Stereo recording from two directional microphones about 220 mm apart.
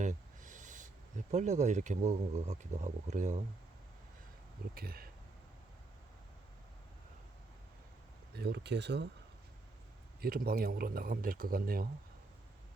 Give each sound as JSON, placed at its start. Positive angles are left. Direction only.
{"t": 0.0, "sound": "speech", "side_deg": -35}
{"t": 4.7, "sound": "speech", "side_deg": -45}
{"t": 8.3, "sound": "speech", "side_deg": -45}
{"t": 10.2, "sound": "speech", "side_deg": -40}